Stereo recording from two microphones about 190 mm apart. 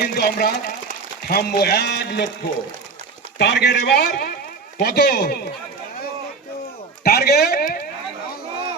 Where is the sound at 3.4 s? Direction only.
65° left (ahead or behind).